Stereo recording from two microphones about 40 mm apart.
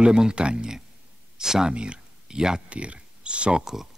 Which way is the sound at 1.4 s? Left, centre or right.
Centre.